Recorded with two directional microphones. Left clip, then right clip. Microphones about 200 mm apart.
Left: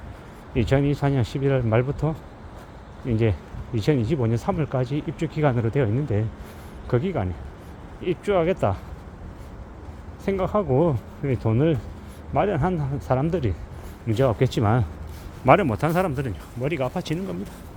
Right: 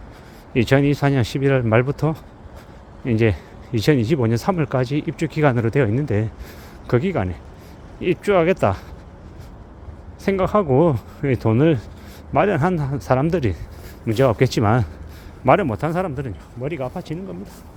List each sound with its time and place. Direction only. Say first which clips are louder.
0.5 s speech: right 5 dB; 35° right (ahead or behind)
10.2 s speech: right 5 dB; 35° right (ahead or behind)
15.4 s speech: right 1 dB; 10° right (ahead or behind); by 17.3 s 10° left (ahead or behind)